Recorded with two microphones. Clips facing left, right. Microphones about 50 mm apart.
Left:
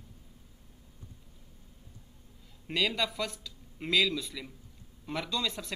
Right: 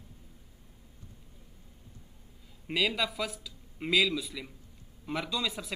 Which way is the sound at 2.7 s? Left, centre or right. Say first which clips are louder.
Right 1 dB; centre.